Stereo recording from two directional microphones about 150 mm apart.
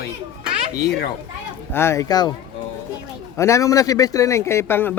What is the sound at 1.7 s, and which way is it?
Speech, 15° left (ahead or behind).